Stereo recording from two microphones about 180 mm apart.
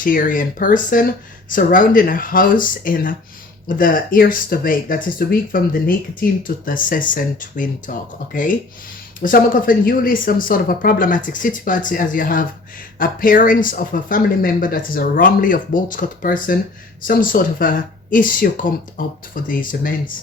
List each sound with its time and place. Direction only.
0.0 s speech: 50° left (ahead or behind)